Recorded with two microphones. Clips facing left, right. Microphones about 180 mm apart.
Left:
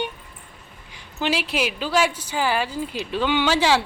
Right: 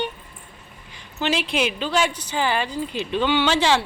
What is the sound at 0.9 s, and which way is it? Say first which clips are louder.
A woman's voice: even; 10° left (ahead or behind).